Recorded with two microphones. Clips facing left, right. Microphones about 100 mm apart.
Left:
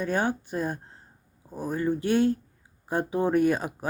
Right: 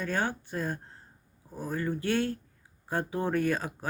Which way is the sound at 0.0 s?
20° left (ahead or behind).